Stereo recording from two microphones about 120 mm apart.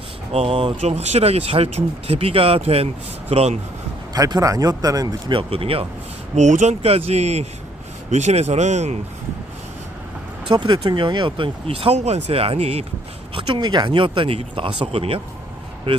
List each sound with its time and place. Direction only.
0.3 s speech: 55° right (ahead or behind)
4.1 s speech: 30° right (ahead or behind)
5.3 s speech: 50° right (ahead or behind)
6.3 s speech: 80° right
10.5 s speech: 40° right (ahead or behind); by 12.8 s 60° right (ahead or behind)
13.3 s speech: 40° right (ahead or behind)